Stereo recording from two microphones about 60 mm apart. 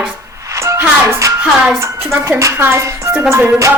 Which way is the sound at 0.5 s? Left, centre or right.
Right.